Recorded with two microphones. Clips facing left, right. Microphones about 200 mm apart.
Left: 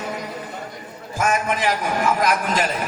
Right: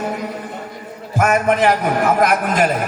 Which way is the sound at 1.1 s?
60° right (ahead or behind).